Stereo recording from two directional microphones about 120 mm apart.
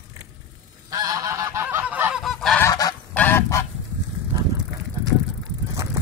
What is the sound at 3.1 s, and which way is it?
Goose, 15° left (ahead or behind).